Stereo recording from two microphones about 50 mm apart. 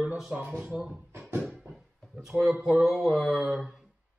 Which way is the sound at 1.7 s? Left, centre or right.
Centre.